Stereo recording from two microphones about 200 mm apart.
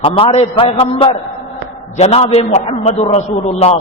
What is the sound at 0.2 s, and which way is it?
A man's voice, 30° left (ahead or behind).